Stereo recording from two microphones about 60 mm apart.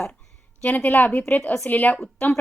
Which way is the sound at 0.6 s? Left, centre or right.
Left.